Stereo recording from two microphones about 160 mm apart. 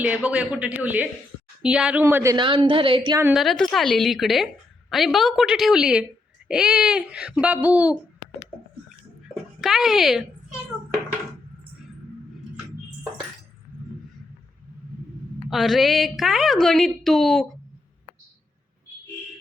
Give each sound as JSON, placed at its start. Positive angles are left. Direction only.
{"t": 0.0, "sound": "a man's voice", "side_deg": -10}
{"t": 2.3, "sound": "a woman's voice", "side_deg": -30}
{"t": 3.3, "sound": "a woman's voice", "side_deg": 0}
{"t": 9.6, "sound": "a woman's voice", "side_deg": 0}
{"t": 15.4, "sound": "a woman's voice", "side_deg": 0}